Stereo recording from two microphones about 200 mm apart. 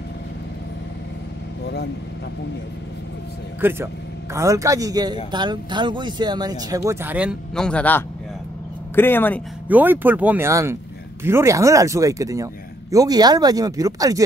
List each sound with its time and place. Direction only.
3.6 s a man's voice: 10° right (ahead or behind); by 9.4 s 10° left (ahead or behind)
9.7 s a man's voice: 10° right (ahead or behind)